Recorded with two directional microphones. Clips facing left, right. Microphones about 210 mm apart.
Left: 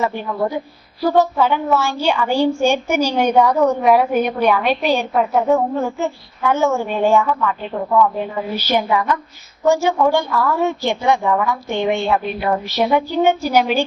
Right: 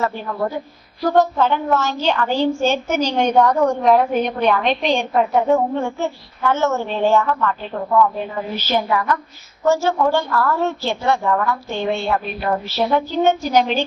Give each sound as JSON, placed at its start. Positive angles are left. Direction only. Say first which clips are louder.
{"t": 0.0, "sound": "a woman's voice", "louder": "left 2 dB", "side_deg": 15}